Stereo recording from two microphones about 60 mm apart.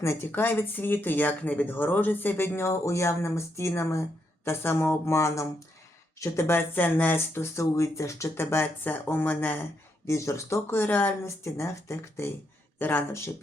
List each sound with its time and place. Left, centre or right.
0.0 s speech: left
0.3 s speech: left
4.4 s speech: left
6.5 s speech: left
7.3 s speech: left
8.4 s speech: left
10.1 s speech: left
10.7 s speech: left
11.4 s speech: left
12.8 s speech: left